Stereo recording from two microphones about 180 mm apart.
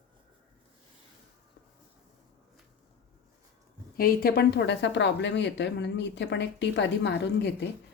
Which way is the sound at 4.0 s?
55° left (ahead or behind).